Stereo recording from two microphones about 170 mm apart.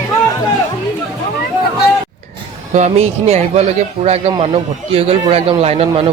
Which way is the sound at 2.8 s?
40° right (ahead or behind).